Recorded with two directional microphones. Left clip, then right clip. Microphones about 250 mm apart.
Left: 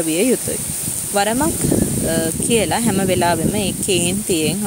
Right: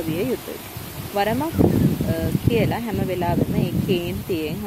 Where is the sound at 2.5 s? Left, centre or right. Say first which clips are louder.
Left 6 dB; left.